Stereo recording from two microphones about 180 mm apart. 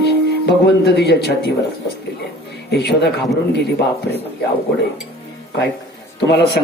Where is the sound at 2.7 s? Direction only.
65° left (ahead or behind).